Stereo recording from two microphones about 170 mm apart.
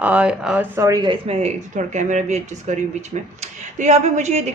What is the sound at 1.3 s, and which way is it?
A woman's voice, 40° right (ahead or behind).